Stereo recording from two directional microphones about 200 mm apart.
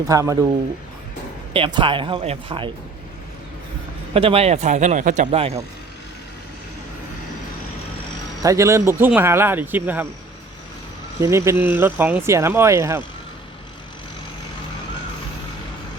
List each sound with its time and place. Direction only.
0.1 s speech: 15° right (ahead or behind)
1.5 s speech: 25° right (ahead or behind)
4.1 s speech: 30° right (ahead or behind)
8.4 s speech: 15° right (ahead or behind)
11.2 s speech: 15° right (ahead or behind)